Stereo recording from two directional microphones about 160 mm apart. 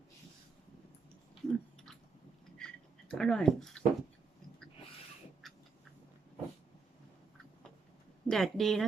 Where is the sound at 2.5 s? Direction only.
5° left (ahead or behind).